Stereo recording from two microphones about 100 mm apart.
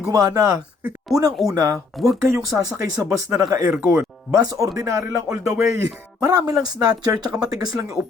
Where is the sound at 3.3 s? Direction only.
35° right (ahead or behind).